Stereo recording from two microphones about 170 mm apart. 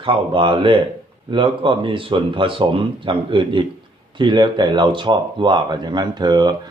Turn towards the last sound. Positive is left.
turn(degrees=-25)  # may be behind; listen again after turning